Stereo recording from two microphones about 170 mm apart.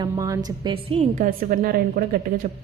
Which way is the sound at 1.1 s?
55° right (ahead or behind).